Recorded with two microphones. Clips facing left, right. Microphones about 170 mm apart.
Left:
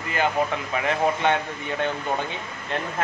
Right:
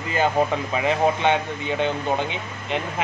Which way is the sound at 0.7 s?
20° right (ahead or behind).